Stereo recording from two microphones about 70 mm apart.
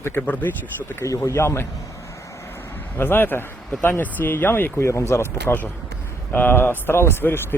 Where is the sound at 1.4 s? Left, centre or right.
Left.